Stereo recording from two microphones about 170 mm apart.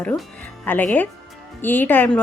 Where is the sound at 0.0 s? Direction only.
10° left (ahead or behind).